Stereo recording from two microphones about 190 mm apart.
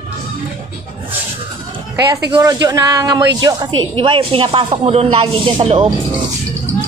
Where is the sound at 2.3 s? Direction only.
15° right (ahead or behind).